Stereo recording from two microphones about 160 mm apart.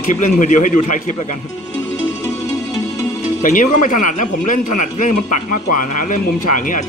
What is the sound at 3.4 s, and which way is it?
Speech, 55° left (ahead or behind).